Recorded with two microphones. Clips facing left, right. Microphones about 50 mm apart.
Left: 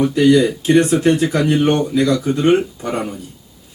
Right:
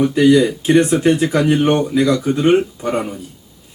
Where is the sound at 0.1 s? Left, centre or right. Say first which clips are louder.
Right 1 dB; centre.